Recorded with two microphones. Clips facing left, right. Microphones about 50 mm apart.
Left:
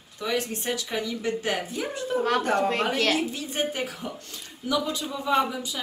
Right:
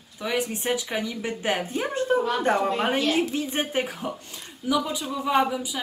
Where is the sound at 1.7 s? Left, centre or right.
Right.